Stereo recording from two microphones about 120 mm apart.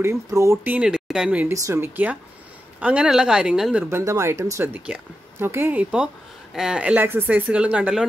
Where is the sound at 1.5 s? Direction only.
25° right (ahead or behind); by 3.8 s 5° right (ahead or behind).